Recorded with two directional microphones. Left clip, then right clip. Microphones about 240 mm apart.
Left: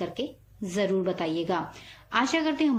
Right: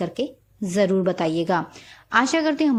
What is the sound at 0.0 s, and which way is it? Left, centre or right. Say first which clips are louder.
A woman's voice: right 6 dB; right.